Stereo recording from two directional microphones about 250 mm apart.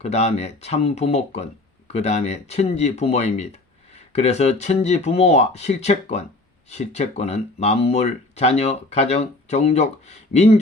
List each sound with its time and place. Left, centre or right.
0.0 s speech: left